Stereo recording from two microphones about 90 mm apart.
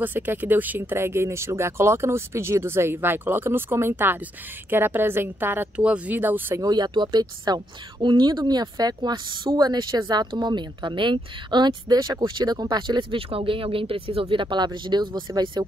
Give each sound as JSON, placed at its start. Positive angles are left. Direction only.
{"t": 0.0, "sound": "speech", "side_deg": -20}
{"t": 6.5, "sound": "speech", "side_deg": -45}
{"t": 9.6, "sound": "speech", "side_deg": -50}